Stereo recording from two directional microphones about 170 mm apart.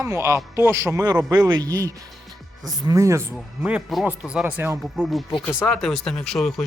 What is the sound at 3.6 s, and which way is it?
Speech, 5° right (ahead or behind).